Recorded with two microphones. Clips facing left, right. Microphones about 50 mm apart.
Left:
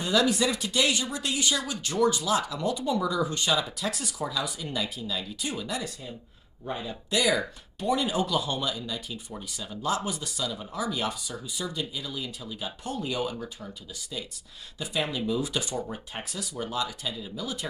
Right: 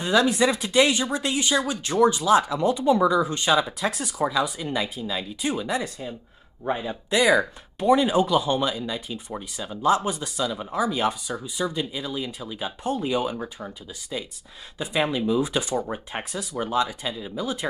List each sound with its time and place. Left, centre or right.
0.0 s speech: right